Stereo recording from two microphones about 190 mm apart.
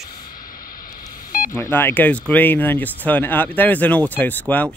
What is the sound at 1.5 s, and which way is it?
Speech, 15° left (ahead or behind).